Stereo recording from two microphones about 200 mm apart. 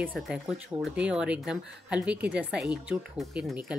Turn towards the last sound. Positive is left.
turn(degrees=-5)  # may be behind; listen again after turning